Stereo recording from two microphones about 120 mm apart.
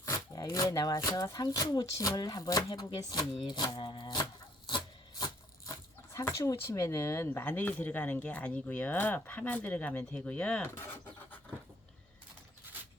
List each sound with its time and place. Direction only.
0.0 s speech: 25° left (ahead or behind)
6.1 s speech: 25° left (ahead or behind); by 10.6 s 10° left (ahead or behind)
10.6 s a sound: 20° left (ahead or behind)